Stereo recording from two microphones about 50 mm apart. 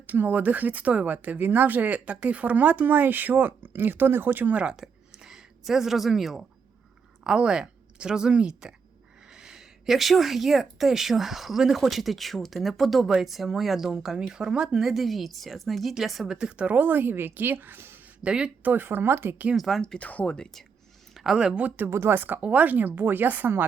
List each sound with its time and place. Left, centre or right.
0.1 s speech: right
4.5 s a sound: centre
7.3 s speech: centre
16.3 s speech: centre
16.7 s speech: right
18.2 s speech: right
18.6 s speech: right
19.5 s speech: centre
19.8 s speech: centre
20.1 s speech: left
21.3 s speech: centre
21.8 s speech: right
22.4 s speech: right